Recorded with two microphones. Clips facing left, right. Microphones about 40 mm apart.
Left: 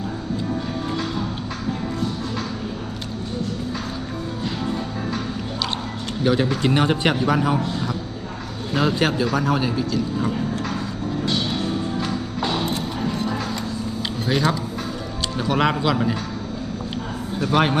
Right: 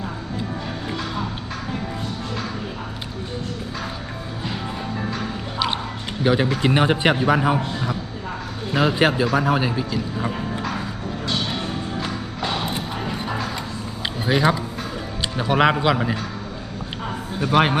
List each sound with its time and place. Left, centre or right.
5.1 s music: centre
6.2 s a man's voice: centre
8.7 s a man's voice: centre
11.9 s music: centre
14.3 s a man's voice: centre
17.4 s a man's voice: centre